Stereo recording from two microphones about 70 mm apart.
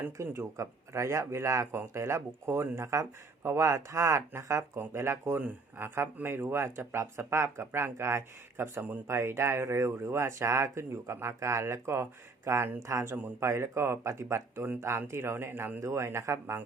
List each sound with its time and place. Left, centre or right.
0.0 s speech: right